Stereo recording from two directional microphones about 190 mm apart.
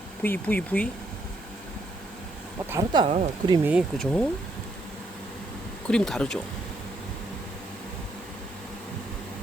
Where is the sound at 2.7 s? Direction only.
25° right (ahead or behind).